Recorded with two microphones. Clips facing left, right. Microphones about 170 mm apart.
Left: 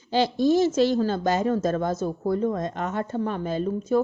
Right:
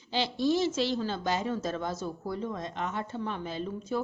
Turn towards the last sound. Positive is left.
turn(degrees=45)  # may be behind; listen again after turning